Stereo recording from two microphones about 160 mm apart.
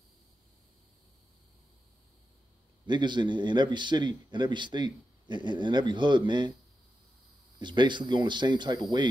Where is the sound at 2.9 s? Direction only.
30° right (ahead or behind).